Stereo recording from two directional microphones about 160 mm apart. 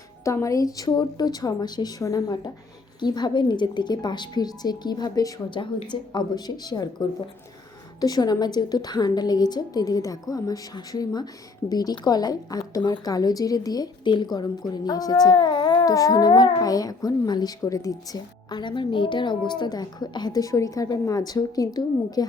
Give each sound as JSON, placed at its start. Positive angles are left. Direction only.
{"t": 0.3, "sound": "a woman's voice", "side_deg": 20}
{"t": 8.0, "sound": "a woman's voice", "side_deg": 25}